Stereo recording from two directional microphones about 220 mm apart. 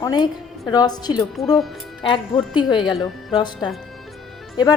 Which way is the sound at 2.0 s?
20° left (ahead or behind).